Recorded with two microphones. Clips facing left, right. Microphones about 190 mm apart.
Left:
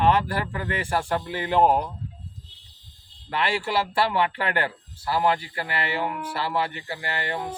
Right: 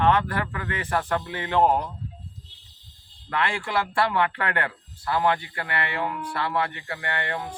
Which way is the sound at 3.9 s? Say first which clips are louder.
Right 2 dB; 25° left (ahead or behind).